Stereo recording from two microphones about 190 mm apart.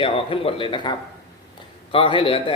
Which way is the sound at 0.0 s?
30° left (ahead or behind).